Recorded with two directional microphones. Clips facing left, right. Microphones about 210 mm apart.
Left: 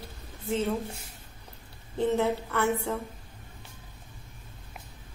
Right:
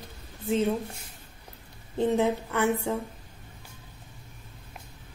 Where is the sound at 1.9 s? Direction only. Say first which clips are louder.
Right 2 dB; 15° right (ahead or behind).